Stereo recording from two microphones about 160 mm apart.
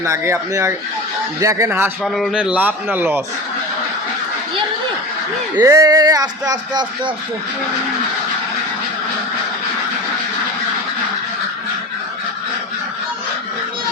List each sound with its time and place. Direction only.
0.0 s a man's voice: 20° right (ahead or behind)
2.0 s a man's voice: centre (ahead or behind)
5.5 s speech: 20° right (ahead or behind)